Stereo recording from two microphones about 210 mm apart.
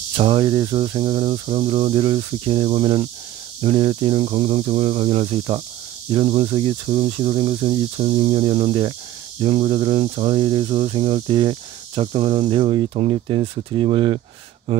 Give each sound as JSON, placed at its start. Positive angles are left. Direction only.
{"t": 0.1, "sound": "speech", "side_deg": -25}